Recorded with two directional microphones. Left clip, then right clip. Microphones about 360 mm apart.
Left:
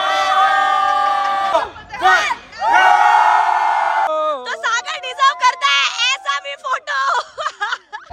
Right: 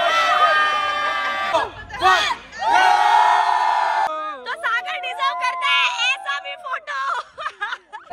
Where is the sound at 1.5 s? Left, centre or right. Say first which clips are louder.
Left 3 dB; centre.